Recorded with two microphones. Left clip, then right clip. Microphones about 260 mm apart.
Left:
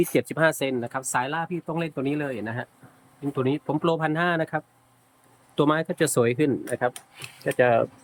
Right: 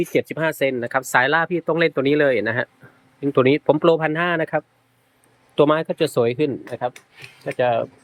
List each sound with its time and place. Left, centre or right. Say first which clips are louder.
0.0 s speech: right 1 dB; centre
3.8 s speech: right 6 dB; centre